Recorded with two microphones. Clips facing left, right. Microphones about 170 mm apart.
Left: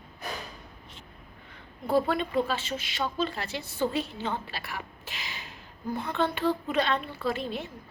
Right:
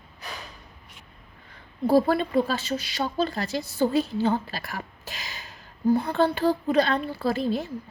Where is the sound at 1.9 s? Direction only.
35° right (ahead or behind).